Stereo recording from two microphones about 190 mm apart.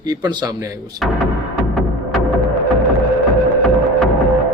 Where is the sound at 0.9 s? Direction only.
Centre (ahead or behind).